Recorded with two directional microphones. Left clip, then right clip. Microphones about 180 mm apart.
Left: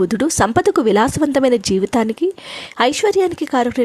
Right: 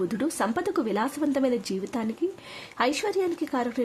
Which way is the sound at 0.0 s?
45° left (ahead or behind).